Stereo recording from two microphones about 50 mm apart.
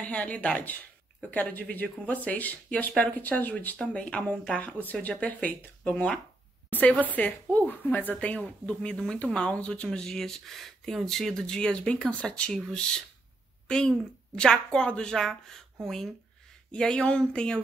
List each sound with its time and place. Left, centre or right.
0.0 s speech: left
0.6 s speech: left
8.9 s speech: centre